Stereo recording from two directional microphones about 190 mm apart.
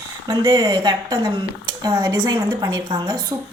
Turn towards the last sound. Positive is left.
turn(degrees=-20)  # may be behind; listen again after turning